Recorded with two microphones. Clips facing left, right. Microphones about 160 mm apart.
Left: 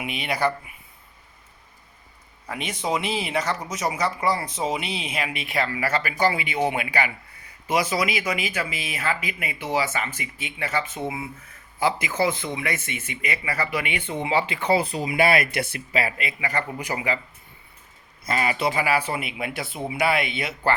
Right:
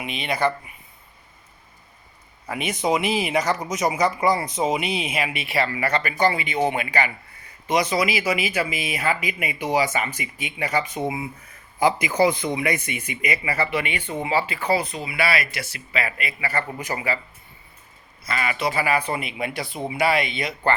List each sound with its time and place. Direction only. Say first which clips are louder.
0.0 s a man's voice: right 1 dB; 10° left (ahead or behind)
2.5 s speech: right 4 dB; 10° right (ahead or behind)
14.1 s a man's voice: even; 15° left (ahead or behind)
14.7 s speech: left 3 dB; 30° left (ahead or behind); by 15.8 s 55° left (ahead or behind)
15.9 s speech: even; 35° left (ahead or behind)
16.1 s a man's voice: even; 20° left (ahead or behind)
18.3 s speech: left 1 dB; 30° left (ahead or behind)
18.7 s speech: right 1 dB; 10° left (ahead or behind)